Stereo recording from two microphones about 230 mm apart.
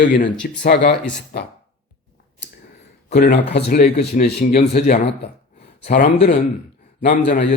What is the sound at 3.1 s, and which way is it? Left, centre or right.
Speech, left.